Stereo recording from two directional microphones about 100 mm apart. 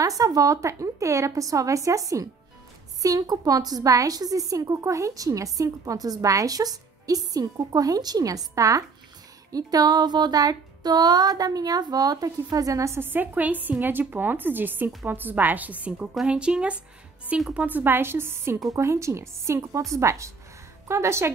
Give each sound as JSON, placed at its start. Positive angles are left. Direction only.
{"t": 0.2, "sound": "a woman's voice", "side_deg": -35}